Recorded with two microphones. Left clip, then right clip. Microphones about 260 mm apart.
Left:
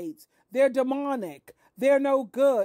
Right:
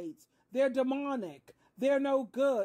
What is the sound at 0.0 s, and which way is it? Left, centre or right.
Speech, left.